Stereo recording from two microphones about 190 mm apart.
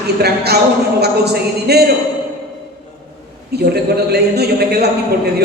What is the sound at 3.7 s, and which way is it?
Speech, 60° right (ahead or behind).